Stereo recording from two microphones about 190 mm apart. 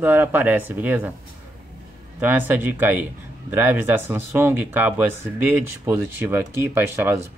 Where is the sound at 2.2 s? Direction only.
10° right (ahead or behind).